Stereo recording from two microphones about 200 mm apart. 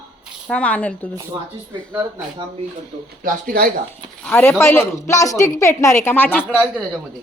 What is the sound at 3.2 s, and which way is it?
Speech, 45° right (ahead or behind).